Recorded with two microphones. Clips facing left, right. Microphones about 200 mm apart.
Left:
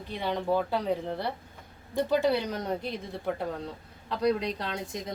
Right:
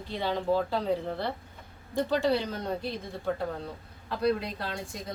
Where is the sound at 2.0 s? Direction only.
15° left (ahead or behind).